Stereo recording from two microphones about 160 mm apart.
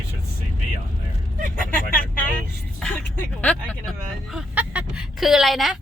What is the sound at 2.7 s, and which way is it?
Music, 5° left (ahead or behind).